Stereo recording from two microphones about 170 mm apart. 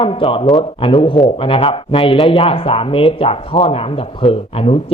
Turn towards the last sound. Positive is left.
turn(degrees=35)  # may be behind; listen again after turning